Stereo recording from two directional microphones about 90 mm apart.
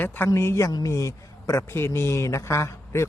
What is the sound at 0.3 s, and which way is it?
A man's voice, 30° left (ahead or behind).